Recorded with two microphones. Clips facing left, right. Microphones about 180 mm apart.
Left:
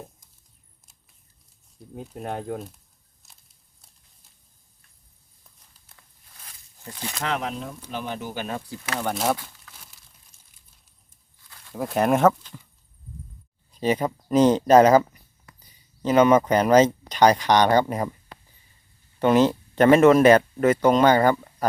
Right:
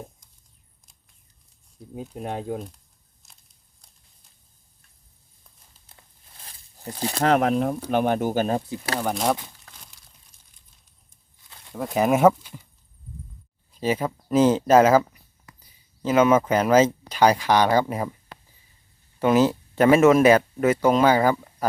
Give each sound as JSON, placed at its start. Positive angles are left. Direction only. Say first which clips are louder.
{"t": 2.0, "sound": "speech", "louder": "right 1 dB", "side_deg": 0}
{"t": 5.7, "sound": "a sound", "louder": "right 2 dB", "side_deg": -25}
{"t": 7.3, "sound": "speech", "louder": "right 10 dB", "side_deg": -60}
{"t": 9.0, "sound": "speech", "louder": "right 1 dB", "side_deg": 0}
{"t": 11.7, "sound": "speech", "louder": "even", "side_deg": 0}
{"t": 13.7, "sound": "speech", "louder": "left 1 dB", "side_deg": -5}
{"t": 16.0, "sound": "speech", "louder": "left 1 dB", "side_deg": -5}
{"t": 19.2, "sound": "speech", "louder": "even", "side_deg": -5}